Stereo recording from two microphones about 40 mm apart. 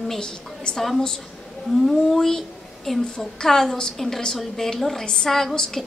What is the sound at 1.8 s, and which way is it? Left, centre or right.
A woman's voice, centre.